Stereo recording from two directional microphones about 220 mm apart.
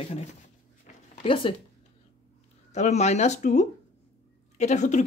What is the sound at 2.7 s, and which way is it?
Speech, 30° left (ahead or behind).